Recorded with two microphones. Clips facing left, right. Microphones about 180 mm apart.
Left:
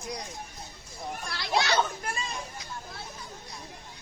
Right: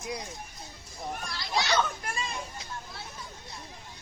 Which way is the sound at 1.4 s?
65° left (ahead or behind).